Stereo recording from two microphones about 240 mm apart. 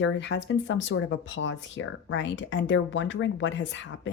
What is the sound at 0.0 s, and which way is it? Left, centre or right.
Speech, left.